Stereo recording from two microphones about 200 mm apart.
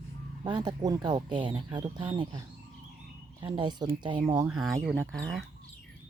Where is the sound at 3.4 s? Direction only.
20° right (ahead or behind).